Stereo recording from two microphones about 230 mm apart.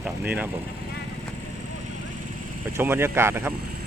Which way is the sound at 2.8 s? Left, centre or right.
Centre.